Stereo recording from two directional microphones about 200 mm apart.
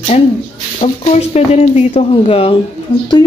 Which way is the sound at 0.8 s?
30° left (ahead or behind).